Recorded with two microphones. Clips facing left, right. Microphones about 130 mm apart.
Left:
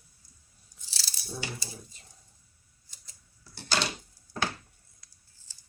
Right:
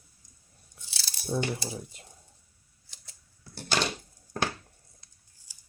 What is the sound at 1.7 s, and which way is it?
Speech, 60° right (ahead or behind).